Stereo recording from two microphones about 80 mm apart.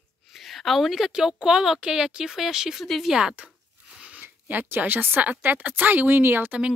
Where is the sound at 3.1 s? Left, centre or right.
Centre.